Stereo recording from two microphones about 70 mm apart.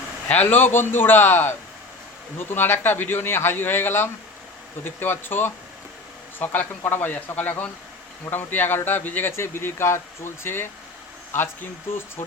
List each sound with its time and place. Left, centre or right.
0.3 s speech: left
9.3 s speech: left